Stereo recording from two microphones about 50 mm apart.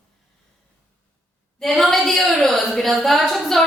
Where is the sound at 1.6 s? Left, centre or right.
Centre.